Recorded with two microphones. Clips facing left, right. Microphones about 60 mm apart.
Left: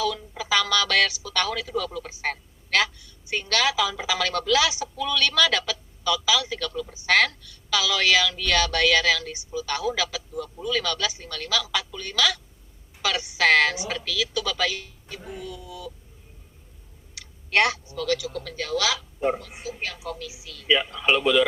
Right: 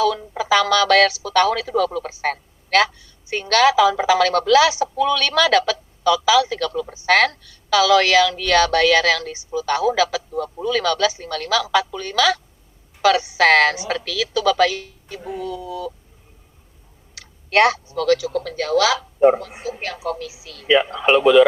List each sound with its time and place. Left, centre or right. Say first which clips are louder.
0.0 s speech: right 8 dB; right
17.5 s speech: right 6 dB; right